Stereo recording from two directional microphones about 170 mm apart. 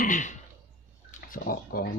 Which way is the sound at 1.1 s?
55° left (ahead or behind).